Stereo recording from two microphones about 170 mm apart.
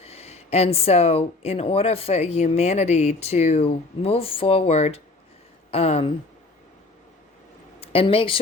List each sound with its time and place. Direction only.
0.0 s speech: 35° left (ahead or behind)
7.8 s speech: 35° left (ahead or behind)